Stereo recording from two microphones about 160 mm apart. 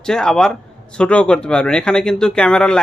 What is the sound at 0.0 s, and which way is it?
Speech, 5° left (ahead or behind).